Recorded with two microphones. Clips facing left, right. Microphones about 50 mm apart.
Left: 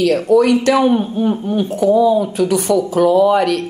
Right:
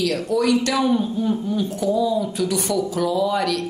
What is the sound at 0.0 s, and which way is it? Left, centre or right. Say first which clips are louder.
Speech: left 8 dB; left.